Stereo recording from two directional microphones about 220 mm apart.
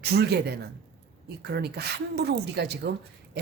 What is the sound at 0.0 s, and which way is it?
Speech, 45° right (ahead or behind).